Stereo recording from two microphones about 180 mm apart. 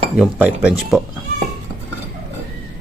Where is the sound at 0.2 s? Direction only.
5° right (ahead or behind).